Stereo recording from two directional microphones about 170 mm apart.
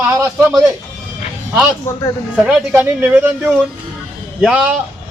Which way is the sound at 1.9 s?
15° left (ahead or behind).